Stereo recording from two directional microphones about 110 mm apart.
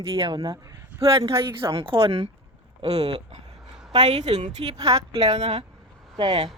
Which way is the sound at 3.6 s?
5° right (ahead or behind).